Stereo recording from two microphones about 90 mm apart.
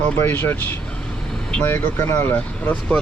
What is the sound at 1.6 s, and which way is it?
Speech, 25° left (ahead or behind).